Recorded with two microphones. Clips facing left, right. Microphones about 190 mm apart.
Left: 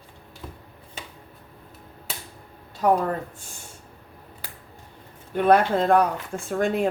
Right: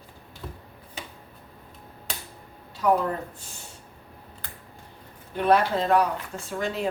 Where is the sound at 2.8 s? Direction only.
55° left (ahead or behind).